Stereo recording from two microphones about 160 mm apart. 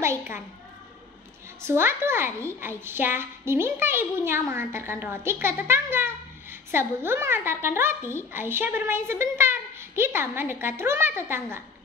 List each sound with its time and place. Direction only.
0.0 s a woman's voice: 15° right (ahead or behind)
1.6 s a woman's voice: 15° right (ahead or behind)
8.0 s a child's voice: 15° left (ahead or behind)
8.3 s a woman's voice: 15° right (ahead or behind)